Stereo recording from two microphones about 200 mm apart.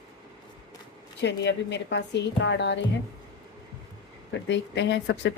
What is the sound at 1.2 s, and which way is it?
A woman's voice, 60° left (ahead or behind).